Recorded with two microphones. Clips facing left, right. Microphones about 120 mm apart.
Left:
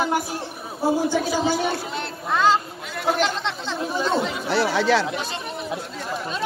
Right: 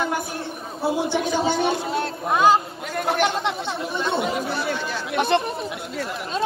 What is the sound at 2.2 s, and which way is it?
Speech, 15° right (ahead or behind).